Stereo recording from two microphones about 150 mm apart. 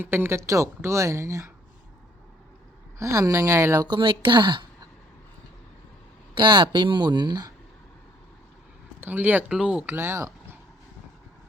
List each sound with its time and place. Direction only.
0.0 s speech: 15° right (ahead or behind)
3.0 s speech: 20° right (ahead or behind)
3.8 s a woman's voice: 35° right (ahead or behind)
6.3 s speech: 30° right (ahead or behind)
9.0 s speech: 10° right (ahead or behind)